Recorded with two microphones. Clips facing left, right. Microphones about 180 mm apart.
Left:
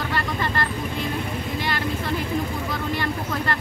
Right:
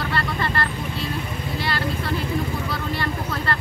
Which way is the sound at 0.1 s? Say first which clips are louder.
Right 1 dB; 15° left (ahead or behind).